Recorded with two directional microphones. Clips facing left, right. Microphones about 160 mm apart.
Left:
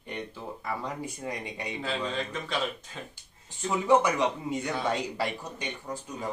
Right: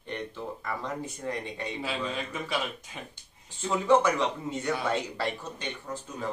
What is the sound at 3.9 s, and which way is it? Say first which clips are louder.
Speech: even; 15° left (ahead or behind).